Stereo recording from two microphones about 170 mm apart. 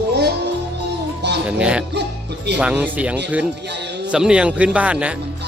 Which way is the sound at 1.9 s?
80° right.